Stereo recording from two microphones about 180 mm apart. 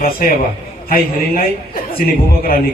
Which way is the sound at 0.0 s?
50° left (ahead or behind).